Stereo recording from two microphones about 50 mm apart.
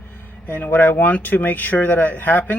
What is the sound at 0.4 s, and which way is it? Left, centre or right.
Speech, left.